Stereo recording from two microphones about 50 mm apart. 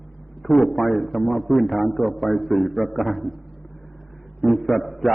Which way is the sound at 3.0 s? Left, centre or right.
Left.